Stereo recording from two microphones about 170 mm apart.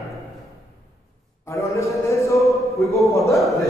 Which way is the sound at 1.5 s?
15° left (ahead or behind).